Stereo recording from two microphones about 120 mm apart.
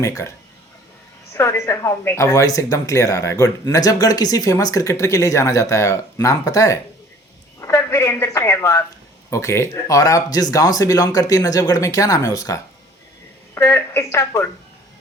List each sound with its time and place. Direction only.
0.0 s speech: 25° left (ahead or behind)